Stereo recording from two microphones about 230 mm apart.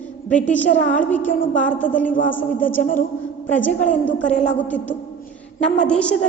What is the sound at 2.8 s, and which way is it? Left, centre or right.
Speech, left.